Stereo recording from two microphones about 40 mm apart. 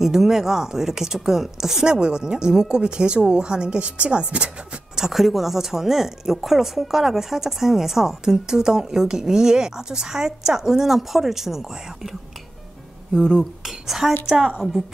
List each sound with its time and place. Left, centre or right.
0.0 s speech: centre
2.0 s a woman's voice: right
4.9 s speech: centre
13.1 s speech: centre
13.7 s speech: centre